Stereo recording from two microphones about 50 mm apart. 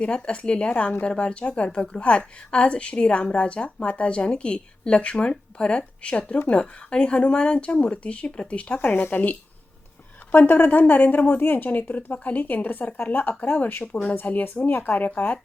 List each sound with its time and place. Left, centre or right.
0.0 s a woman's voice: left
8.9 s speech: left
13.9 s a woman's voice: left